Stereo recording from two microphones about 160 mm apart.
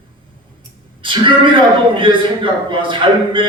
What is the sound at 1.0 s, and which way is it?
A man's voice, 30° right (ahead or behind).